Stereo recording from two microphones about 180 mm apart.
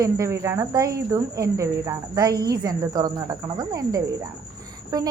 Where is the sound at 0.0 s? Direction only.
15° right (ahead or behind).